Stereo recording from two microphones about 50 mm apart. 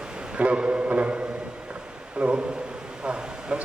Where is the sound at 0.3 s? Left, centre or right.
Right.